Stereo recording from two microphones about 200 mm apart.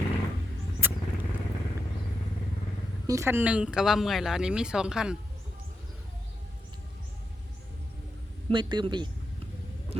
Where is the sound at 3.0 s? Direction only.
15° right (ahead or behind).